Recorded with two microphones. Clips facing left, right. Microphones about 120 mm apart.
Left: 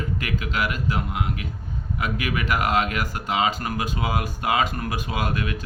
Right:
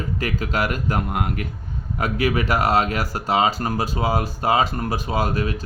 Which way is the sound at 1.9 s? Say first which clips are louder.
Right 6 dB; 35° right (ahead or behind).